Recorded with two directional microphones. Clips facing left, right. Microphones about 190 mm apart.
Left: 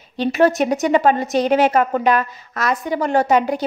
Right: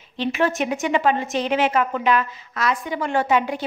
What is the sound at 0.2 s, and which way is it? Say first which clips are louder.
A woman's voice: left 6 dB; 40° left (ahead or behind).